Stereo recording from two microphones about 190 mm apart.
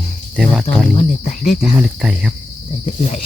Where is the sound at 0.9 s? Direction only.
40° left (ahead or behind).